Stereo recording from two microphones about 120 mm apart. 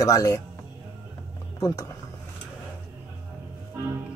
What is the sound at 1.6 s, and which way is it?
Speech, 30° left (ahead or behind).